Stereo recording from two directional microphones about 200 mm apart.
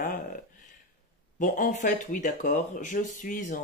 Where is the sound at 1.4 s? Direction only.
40° left (ahead or behind).